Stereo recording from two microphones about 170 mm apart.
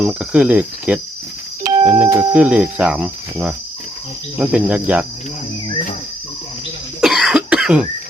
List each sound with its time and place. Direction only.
0.0 s cricket: 5° right (ahead or behind)
1.6 s music: 25° right (ahead or behind)
1.9 s cricket: 10° right (ahead or behind)
7.0 s cough: centre (ahead or behind)